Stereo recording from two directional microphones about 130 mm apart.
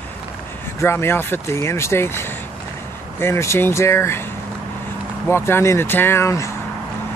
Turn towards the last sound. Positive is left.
turn(degrees=20)  # may be behind; listen again after turning